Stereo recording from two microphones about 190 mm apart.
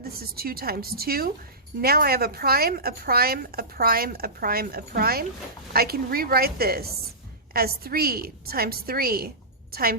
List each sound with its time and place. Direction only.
0.0 s a woman's voice: 50° right (ahead or behind)